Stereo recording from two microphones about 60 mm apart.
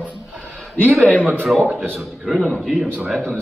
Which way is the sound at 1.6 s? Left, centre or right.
Right.